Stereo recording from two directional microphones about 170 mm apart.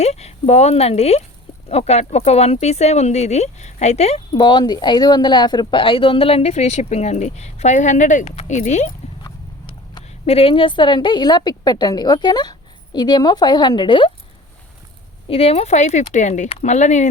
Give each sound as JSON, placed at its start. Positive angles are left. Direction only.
{"t": 0.0, "sound": "speech", "side_deg": 40}
{"t": 4.3, "sound": "speech", "side_deg": 25}
{"t": 9.9, "sound": "a woman's voice", "side_deg": 35}
{"t": 15.3, "sound": "speech", "side_deg": 35}